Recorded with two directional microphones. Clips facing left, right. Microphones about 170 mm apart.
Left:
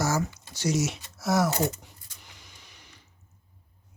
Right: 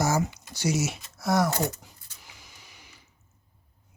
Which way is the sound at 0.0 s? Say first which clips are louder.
Right 2 dB; 15° right (ahead or behind).